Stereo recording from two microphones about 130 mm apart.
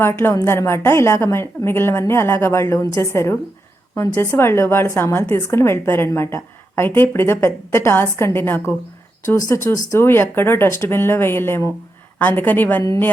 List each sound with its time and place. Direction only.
0.0 s a woman's voice: 20° left (ahead or behind)